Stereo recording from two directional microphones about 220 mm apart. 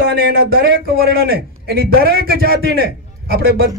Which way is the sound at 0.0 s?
45° right (ahead or behind).